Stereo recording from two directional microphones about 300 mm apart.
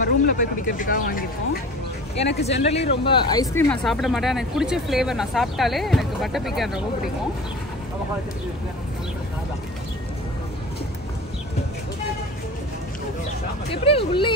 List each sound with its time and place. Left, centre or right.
0.0 s speech: left; by 6.8 s centre
13.8 s speech: centre